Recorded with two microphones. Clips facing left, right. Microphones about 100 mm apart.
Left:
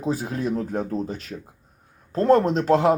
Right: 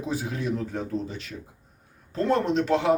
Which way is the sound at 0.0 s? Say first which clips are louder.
Left 4 dB; 40° left (ahead or behind).